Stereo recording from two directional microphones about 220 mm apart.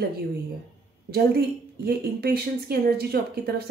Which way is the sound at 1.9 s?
45° right (ahead or behind).